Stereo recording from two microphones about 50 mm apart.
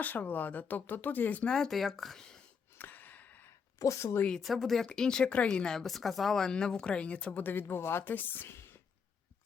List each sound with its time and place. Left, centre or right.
0.0 s speech: left
1.5 s speech: centre
1.7 s speech: centre
2.7 s a sound: left
3.8 s a woman's voice: left
4.4 s speech: centre
4.9 s speech: centre
5.2 s speech: left
5.5 s speech: centre
7.4 s speech: left
8.0 s speech: left